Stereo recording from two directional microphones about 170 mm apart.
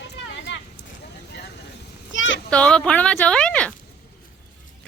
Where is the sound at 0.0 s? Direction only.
90° left.